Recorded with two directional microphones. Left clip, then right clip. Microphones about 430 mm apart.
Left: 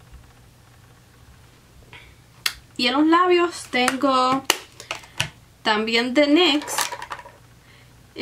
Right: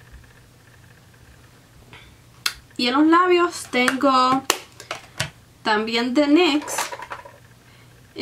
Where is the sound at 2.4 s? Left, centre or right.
Centre.